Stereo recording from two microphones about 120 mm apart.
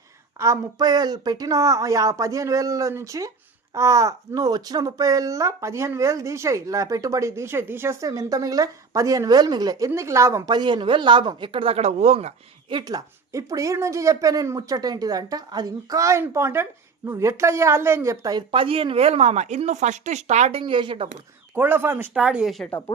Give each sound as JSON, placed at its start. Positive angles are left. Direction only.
{"t": 0.3, "sound": "speech", "side_deg": -25}
{"t": 8.0, "sound": "speech", "side_deg": -30}
{"t": 10.5, "sound": "speech", "side_deg": -35}
{"t": 12.7, "sound": "a woman's voice", "side_deg": -35}
{"t": 18.5, "sound": "a woman's voice", "side_deg": -50}
{"t": 20.6, "sound": "speech", "side_deg": -45}
{"t": 21.5, "sound": "speech", "side_deg": -15}
{"t": 22.1, "sound": "speech", "side_deg": -5}